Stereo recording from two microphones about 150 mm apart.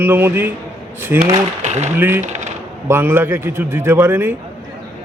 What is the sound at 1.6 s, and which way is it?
Speech, 50° right (ahead or behind).